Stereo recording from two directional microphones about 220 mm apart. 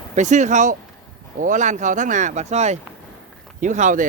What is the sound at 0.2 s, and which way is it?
Speech, 35° right (ahead or behind).